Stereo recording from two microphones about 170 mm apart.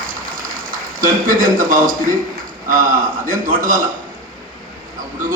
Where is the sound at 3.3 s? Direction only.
55° right (ahead or behind).